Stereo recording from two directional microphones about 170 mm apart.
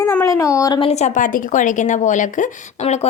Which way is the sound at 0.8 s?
35° left (ahead or behind).